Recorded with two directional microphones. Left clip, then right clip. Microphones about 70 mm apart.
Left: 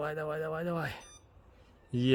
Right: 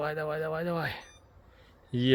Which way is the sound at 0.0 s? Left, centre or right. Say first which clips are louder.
Right 3 dB; centre.